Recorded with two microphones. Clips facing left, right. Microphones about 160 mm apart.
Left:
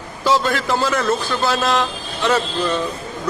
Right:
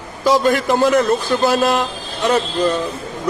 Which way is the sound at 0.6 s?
20° right (ahead or behind).